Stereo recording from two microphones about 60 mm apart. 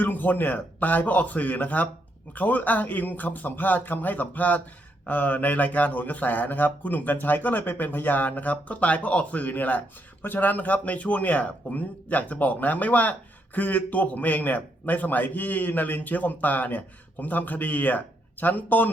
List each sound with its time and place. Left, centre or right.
0.0 s a man's voice: left